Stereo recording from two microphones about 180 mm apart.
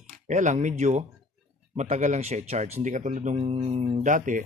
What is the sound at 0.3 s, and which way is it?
Speech, 40° right (ahead or behind).